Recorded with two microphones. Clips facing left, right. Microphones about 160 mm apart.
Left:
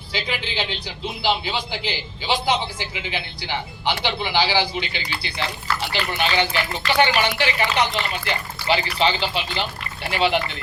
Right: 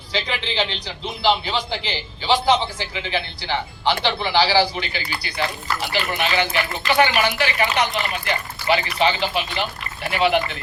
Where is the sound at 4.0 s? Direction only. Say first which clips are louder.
Right 2 dB; 15° left (ahead or behind).